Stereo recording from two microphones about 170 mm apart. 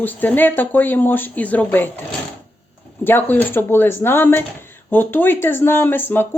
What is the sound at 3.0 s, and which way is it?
A woman's voice, 10° left (ahead or behind).